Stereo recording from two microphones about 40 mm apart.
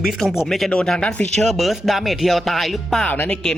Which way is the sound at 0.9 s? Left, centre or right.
Centre.